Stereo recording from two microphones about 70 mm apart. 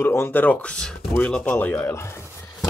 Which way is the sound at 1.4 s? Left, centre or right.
Left.